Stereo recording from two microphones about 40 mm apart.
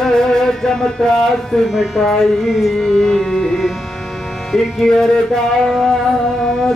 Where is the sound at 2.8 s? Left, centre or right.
Centre.